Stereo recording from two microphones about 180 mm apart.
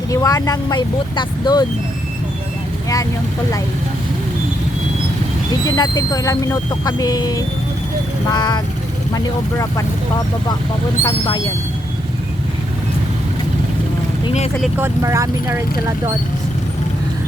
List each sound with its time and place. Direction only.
0.1 s speech: 20° left (ahead or behind)
5.6 s speech: 20° left (ahead or behind)
11.0 s speech: 20° left (ahead or behind)
14.3 s speech: 35° left (ahead or behind)
14.8 s speech: 15° right (ahead or behind)